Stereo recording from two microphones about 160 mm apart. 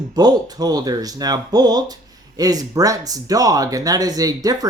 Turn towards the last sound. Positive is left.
turn(degrees=-25)  # may be behind; listen again after turning